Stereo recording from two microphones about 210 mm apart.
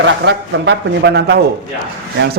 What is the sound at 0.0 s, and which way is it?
A man's voice, 60° right (ahead or behind).